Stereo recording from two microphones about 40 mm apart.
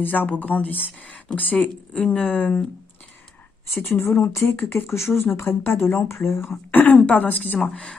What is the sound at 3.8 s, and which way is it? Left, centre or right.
Speech, left.